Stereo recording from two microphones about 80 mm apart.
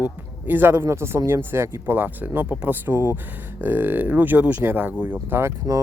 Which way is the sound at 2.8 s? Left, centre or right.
Right.